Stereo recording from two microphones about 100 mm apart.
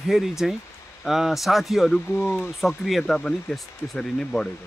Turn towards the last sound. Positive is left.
turn(degrees=5)  # may be behind; listen again after turning